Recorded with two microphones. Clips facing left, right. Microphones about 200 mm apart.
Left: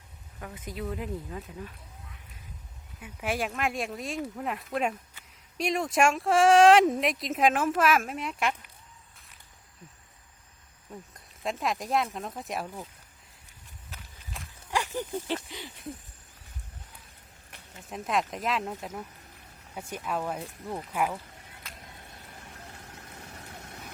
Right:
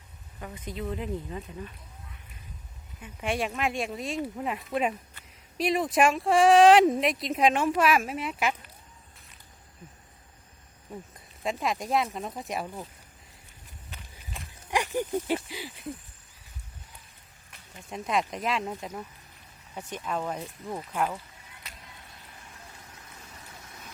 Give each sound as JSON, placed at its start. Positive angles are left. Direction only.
{"t": 0.3, "sound": "speech", "side_deg": 0}
{"t": 3.0, "sound": "speech", "side_deg": 5}
{"t": 11.1, "sound": "speech", "side_deg": 0}
{"t": 14.7, "sound": "a sound", "side_deg": -15}
{"t": 17.8, "sound": "speech", "side_deg": 0}
{"t": 22.7, "sound": "vehicle", "side_deg": 65}